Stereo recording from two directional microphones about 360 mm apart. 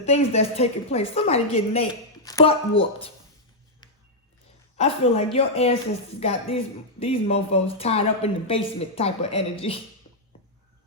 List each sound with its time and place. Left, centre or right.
0.0 s a woman's voice: centre
4.8 s a woman's voice: centre